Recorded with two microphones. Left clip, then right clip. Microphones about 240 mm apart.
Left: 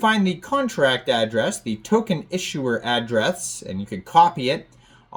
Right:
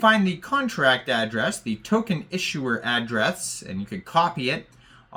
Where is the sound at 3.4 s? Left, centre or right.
Right.